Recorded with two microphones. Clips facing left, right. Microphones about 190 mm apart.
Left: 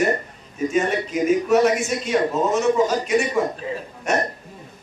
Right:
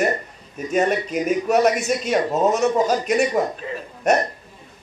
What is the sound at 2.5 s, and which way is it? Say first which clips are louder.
Speech: even; 40° right (ahead or behind).